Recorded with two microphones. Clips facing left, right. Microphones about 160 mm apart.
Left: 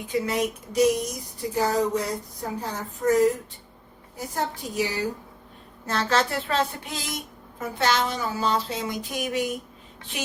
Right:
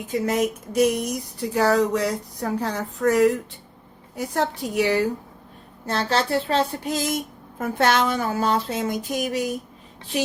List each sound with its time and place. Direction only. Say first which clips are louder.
0.1 s speech: right 3 dB; 45° right (ahead or behind)
1.5 s speech: right 4 dB; 75° right (ahead or behind)
5.8 s speech: right 1 dB; 30° right (ahead or behind)
7.6 s speech: right 4 dB; 55° right (ahead or behind)